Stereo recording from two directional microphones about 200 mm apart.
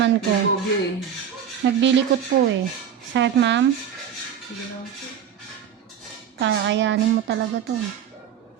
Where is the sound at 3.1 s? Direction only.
65° right (ahead or behind).